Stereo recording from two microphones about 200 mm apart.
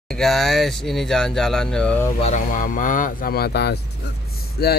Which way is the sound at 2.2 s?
40° left (ahead or behind).